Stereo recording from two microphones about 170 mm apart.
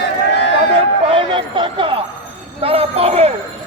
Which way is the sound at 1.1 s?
30° right (ahead or behind).